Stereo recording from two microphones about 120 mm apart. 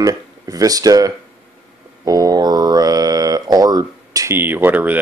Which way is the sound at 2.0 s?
30° right (ahead or behind).